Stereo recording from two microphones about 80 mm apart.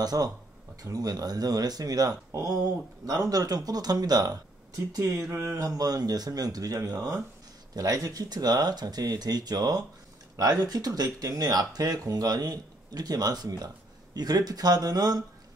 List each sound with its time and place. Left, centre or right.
0.0 s speech: right
5.8 s speech: right